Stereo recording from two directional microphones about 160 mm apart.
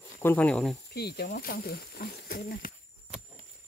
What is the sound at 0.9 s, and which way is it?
Speech, 80° left.